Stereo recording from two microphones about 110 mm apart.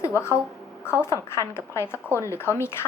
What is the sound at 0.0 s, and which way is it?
A woman's voice, 25° left (ahead or behind).